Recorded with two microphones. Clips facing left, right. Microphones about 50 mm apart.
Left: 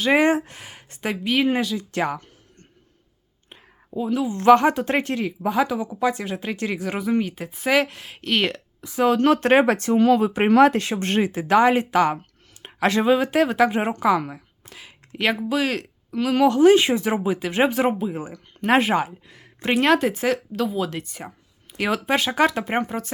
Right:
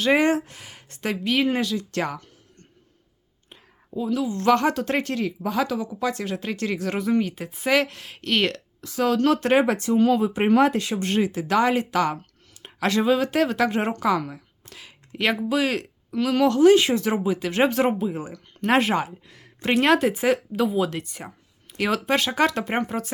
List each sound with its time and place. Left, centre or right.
0.2 s speech: left
1.1 s speech: centre
3.5 s a woman's voice: left
11.0 s a woman's voice: left; by 16.6 s centre
16.6 s a woman's voice: left; by 23.1 s centre